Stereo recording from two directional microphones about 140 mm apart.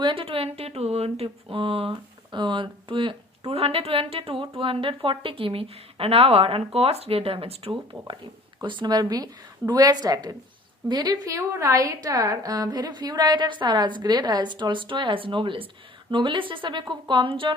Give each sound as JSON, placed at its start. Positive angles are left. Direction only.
{"t": 0.0, "sound": "a woman's voice", "side_deg": -40}